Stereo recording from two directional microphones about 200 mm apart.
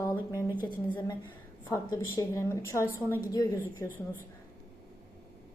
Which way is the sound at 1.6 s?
10° left (ahead or behind).